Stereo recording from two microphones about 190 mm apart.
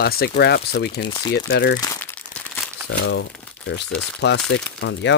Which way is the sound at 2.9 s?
70° left (ahead or behind).